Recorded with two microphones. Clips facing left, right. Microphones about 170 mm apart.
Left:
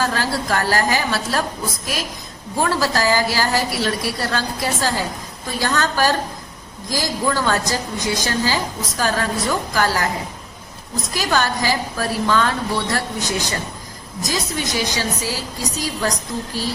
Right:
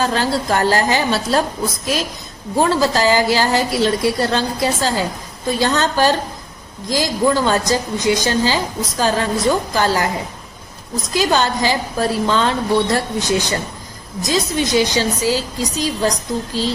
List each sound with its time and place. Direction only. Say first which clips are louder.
0.0 s a woman's voice: right 3 dB; 25° right (ahead or behind)
2.6 s a woman's voice: right 4 dB; 20° right (ahead or behind)
11.1 s a woman's voice: right 4 dB; 20° right (ahead or behind)